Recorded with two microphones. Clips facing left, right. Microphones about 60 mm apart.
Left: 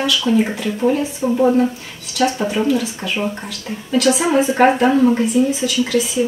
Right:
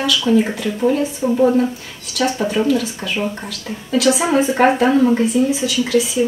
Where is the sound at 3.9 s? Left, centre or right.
Centre.